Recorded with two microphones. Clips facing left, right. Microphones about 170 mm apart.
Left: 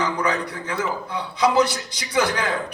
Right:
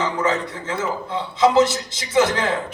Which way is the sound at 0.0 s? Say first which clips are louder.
Right 2 dB; 25° right (ahead or behind).